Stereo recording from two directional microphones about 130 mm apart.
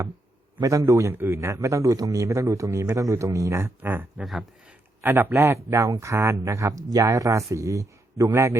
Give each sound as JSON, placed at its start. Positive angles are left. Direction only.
{"t": 0.6, "sound": "a man's voice", "side_deg": -25}
{"t": 4.2, "sound": "speech", "side_deg": -5}
{"t": 5.0, "sound": "a man's voice", "side_deg": -15}